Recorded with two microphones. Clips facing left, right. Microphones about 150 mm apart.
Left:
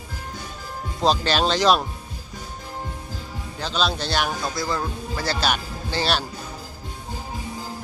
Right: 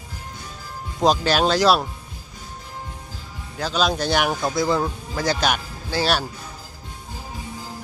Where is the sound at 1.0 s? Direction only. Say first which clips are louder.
Right 2 dB; 10° right (ahead or behind).